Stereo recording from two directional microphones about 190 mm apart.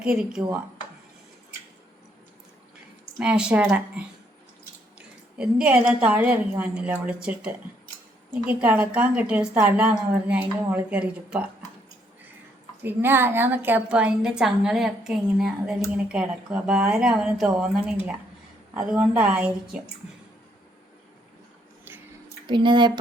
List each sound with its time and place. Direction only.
0.0 s a woman's voice: 5° right (ahead or behind)
3.2 s a woman's voice: 5° right (ahead or behind)
12.8 s a woman's voice: 10° right (ahead or behind)
22.4 s speech: 25° right (ahead or behind)